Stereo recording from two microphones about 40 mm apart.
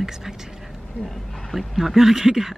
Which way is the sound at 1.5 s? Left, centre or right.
Centre.